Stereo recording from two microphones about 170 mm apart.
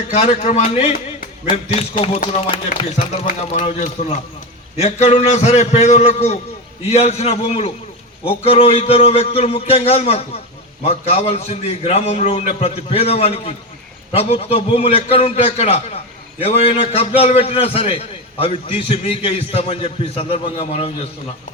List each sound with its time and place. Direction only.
0.1 s a man's voice: 40° left (ahead or behind)